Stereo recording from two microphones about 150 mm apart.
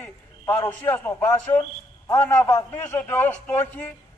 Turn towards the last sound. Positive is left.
turn(degrees=10)  # may be behind; listen again after turning